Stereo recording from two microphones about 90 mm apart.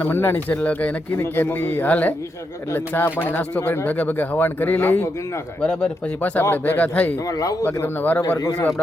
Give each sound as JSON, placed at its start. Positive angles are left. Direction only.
{"t": 0.0, "sound": "speech", "side_deg": 25}
{"t": 3.8, "sound": "speech", "side_deg": 15}
{"t": 6.4, "sound": "speech", "side_deg": 25}
{"t": 7.3, "sound": "speech", "side_deg": 40}
{"t": 7.6, "sound": "speech", "side_deg": 20}